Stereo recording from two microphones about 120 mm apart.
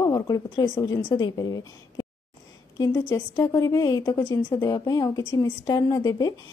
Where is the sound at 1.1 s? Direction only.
35° left (ahead or behind).